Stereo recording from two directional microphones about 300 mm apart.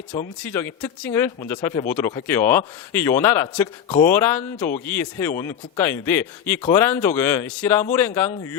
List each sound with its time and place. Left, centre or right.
0.4 s speech: centre
1.6 s speech: centre
1.9 s speech: centre
3.8 s speech: left
4.1 s speech: centre